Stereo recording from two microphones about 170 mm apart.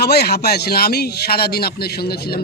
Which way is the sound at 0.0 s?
70° left (ahead or behind).